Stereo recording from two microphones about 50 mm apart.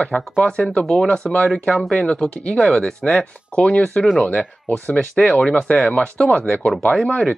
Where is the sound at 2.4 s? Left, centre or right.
Left.